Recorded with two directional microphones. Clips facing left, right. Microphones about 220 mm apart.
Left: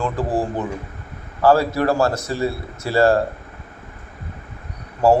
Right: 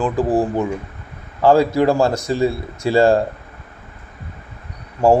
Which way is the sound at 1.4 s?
15° right (ahead or behind).